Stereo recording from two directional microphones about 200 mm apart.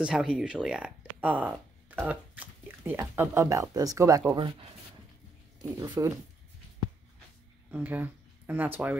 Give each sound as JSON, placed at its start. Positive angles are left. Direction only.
{"t": 0.0, "sound": "speech", "side_deg": -5}
{"t": 5.6, "sound": "speech", "side_deg": -15}
{"t": 7.7, "sound": "speech", "side_deg": -10}